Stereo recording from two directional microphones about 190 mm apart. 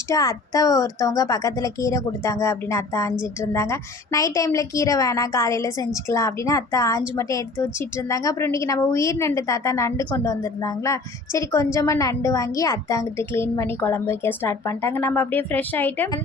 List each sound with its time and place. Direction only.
0.1 s a woman's voice: 20° left (ahead or behind)